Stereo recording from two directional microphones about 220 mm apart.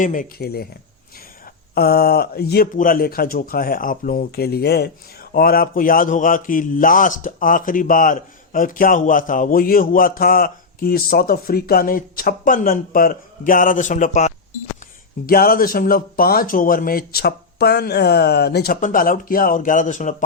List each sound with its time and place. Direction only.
0.0 s speech: 35° left (ahead or behind)
1.7 s speech: 45° left (ahead or behind)